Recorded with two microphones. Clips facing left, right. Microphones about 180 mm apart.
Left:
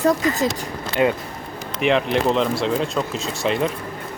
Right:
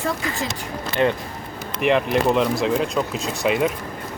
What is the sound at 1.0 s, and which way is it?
Speech, 10° left (ahead or behind).